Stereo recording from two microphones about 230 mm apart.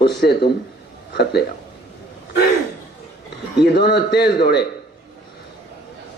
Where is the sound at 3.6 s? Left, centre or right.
Left.